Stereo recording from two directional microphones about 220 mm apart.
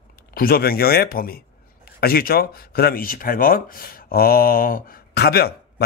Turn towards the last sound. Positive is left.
turn(degrees=45)  # may be behind; listen again after turning